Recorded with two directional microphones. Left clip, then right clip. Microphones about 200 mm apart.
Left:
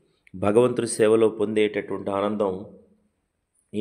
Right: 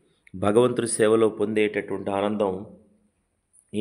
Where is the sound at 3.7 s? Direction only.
5° right (ahead or behind).